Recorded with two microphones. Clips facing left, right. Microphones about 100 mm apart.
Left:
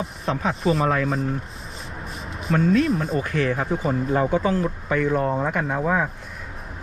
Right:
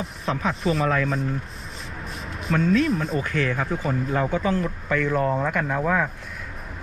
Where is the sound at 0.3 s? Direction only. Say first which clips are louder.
Left 2 dB; 35° left (ahead or behind).